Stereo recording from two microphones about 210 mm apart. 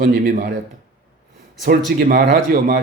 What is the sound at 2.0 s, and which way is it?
Speech, 40° right (ahead or behind).